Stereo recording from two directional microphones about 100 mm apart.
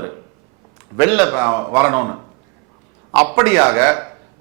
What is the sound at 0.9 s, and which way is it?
Speech, 15° right (ahead or behind).